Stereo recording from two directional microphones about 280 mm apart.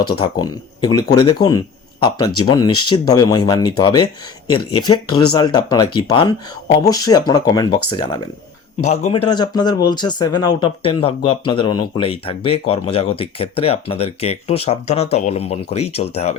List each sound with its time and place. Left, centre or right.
0.2 s speech: centre